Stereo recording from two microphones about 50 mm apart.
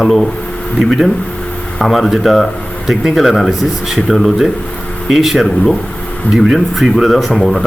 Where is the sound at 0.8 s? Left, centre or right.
Centre.